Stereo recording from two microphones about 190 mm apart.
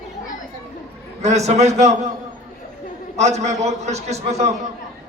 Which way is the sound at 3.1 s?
35° right (ahead or behind).